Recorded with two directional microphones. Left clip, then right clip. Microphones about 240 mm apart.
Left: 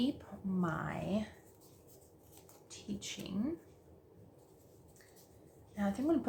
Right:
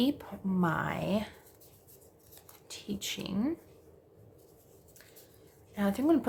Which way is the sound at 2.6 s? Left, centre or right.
Right.